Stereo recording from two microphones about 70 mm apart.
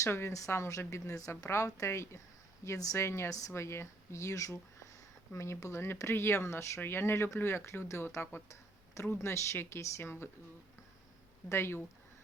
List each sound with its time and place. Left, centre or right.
0.0 s a woman's voice: left
11.4 s speech: left